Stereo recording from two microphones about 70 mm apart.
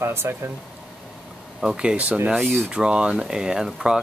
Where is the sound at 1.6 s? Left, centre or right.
Centre.